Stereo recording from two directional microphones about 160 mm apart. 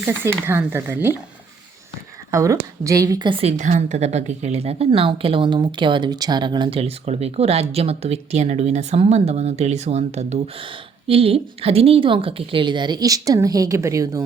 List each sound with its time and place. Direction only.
0.0 s speech: 15° right (ahead or behind)
2.3 s speech: 20° right (ahead or behind)
3.6 s a woman's voice: 45° right (ahead or behind); by 14.3 s 20° right (ahead or behind)